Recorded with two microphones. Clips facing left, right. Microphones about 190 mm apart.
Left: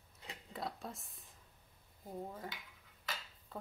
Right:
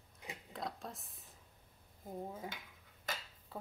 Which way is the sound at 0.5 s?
Centre (ahead or behind).